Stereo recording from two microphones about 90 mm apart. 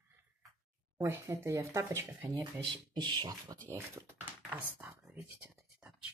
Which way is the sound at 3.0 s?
50° right (ahead or behind).